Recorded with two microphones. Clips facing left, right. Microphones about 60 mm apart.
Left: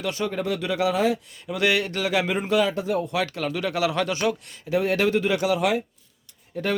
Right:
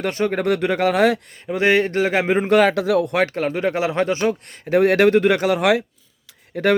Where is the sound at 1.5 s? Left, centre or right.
Right.